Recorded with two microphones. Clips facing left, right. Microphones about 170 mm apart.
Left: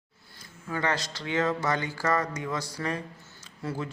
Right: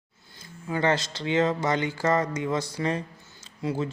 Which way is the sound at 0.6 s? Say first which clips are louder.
Right 5 dB; 25° right (ahead or behind).